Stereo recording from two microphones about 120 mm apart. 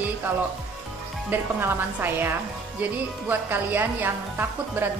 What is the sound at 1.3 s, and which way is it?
Speech, 15° right (ahead or behind).